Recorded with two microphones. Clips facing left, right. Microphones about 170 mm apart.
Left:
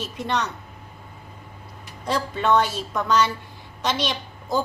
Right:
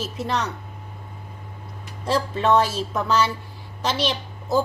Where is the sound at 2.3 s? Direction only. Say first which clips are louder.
Even; 5° right (ahead or behind).